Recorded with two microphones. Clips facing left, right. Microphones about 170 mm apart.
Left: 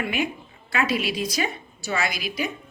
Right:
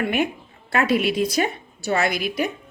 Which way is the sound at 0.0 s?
55° right (ahead or behind).